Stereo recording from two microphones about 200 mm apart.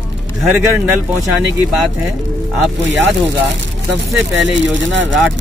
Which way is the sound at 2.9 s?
65° right (ahead or behind).